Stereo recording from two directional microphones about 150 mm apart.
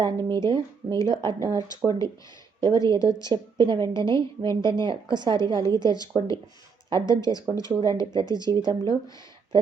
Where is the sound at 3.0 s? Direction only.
20° left (ahead or behind).